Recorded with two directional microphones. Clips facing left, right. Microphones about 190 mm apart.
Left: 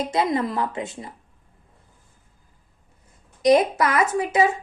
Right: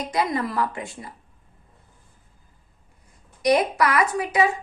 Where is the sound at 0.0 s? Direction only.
25° left (ahead or behind).